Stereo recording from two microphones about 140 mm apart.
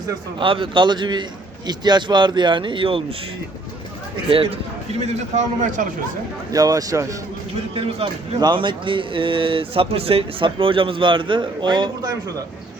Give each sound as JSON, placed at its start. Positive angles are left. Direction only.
{"t": 0.3, "sound": "speech", "side_deg": -40}
{"t": 4.3, "sound": "speech", "side_deg": -40}
{"t": 5.0, "sound": "a man's voice", "side_deg": -60}
{"t": 6.5, "sound": "speech", "side_deg": -25}
{"t": 8.4, "sound": "speech", "side_deg": -35}